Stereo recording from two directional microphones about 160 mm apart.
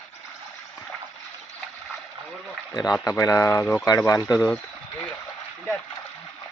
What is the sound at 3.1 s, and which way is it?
A man's voice, 20° left (ahead or behind).